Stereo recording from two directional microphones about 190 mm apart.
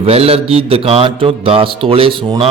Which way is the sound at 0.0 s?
30° right (ahead or behind).